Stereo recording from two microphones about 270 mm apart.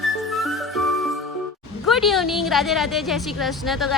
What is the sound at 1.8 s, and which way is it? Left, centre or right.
A woman's voice, centre.